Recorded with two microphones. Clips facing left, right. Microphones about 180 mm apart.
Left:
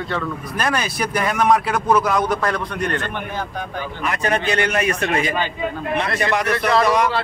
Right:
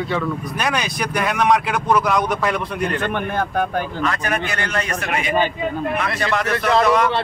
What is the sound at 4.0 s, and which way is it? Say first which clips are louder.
Speech: left 4 dB; 20° left (ahead or behind).